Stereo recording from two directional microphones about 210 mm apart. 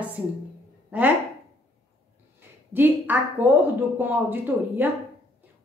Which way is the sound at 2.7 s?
10° right (ahead or behind).